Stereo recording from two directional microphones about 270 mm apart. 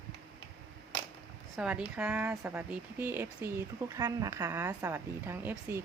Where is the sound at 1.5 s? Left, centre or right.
Centre.